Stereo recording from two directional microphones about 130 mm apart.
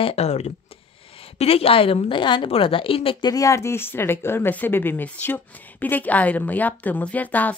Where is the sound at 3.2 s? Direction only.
25° left (ahead or behind).